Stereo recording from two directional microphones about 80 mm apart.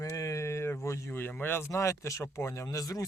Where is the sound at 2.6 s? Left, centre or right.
Left.